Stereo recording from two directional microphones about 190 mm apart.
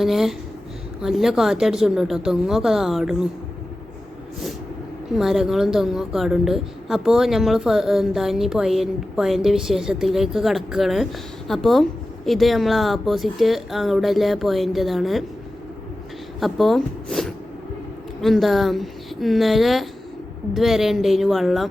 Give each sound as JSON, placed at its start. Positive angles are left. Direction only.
{"t": 0.0, "sound": "a woman's voice", "side_deg": 0}
{"t": 5.1, "sound": "a woman's voice", "side_deg": 0}
{"t": 16.4, "sound": "a woman's voice", "side_deg": 0}